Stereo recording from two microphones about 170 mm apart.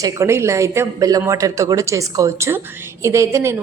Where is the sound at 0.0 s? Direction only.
15° right (ahead or behind).